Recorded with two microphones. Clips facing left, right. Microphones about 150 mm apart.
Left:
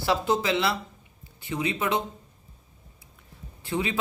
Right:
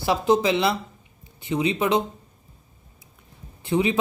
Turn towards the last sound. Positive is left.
turn(degrees=-20)  # may be behind; listen again after turning